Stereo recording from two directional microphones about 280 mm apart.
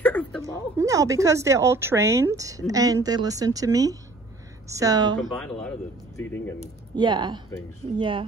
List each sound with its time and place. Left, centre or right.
0.0 s a sound: centre
0.4 s speech: centre
5.2 s speech: centre
6.6 s speech: centre